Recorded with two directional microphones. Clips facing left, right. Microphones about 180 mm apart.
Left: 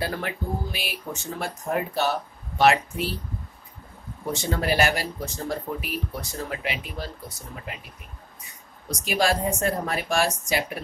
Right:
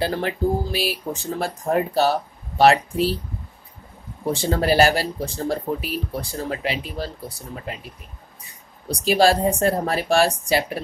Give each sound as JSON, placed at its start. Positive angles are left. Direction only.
{"t": 0.0, "sound": "speech", "side_deg": -30}
{"t": 4.3, "sound": "speech", "side_deg": -30}
{"t": 8.8, "sound": "speech", "side_deg": -30}